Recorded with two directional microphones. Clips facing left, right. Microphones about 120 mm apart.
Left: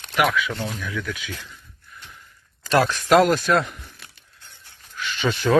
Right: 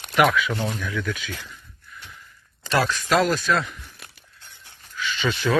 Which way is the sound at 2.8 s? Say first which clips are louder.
Left 5 dB; 50° left (ahead or behind).